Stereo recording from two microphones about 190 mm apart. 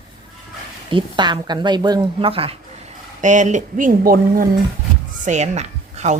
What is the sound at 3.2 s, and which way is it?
Speech, 40° right (ahead or behind).